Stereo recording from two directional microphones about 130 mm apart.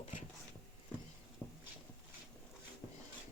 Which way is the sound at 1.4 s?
10° left (ahead or behind).